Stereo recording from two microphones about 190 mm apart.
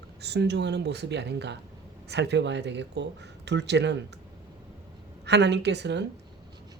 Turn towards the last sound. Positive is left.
turn(degrees=-65)  # may be behind; listen again after turning